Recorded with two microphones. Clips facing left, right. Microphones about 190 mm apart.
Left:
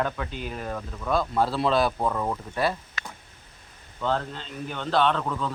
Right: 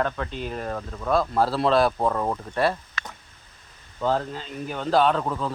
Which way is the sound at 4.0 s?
5° right (ahead or behind).